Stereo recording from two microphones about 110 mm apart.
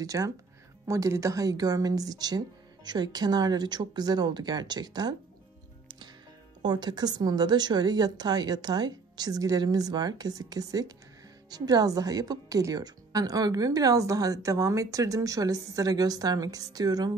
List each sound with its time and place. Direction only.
0.0 s a woman's voice: 30° right (ahead or behind)
6.6 s a woman's voice: 40° right (ahead or behind)